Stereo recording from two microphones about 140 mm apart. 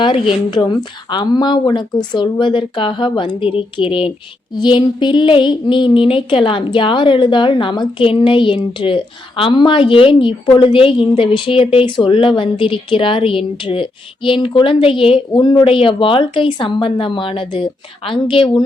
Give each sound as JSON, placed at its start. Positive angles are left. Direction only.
{"t": 0.0, "sound": "speech", "side_deg": 35}